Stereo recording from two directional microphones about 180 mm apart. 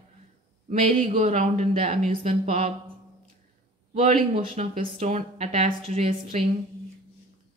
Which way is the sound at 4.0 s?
40° right (ahead or behind).